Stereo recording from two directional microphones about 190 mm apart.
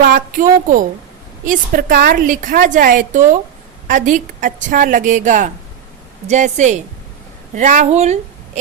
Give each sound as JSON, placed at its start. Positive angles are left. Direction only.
{"t": 0.0, "sound": "speech", "side_deg": -50}
{"t": 1.5, "sound": "a woman's voice", "side_deg": -50}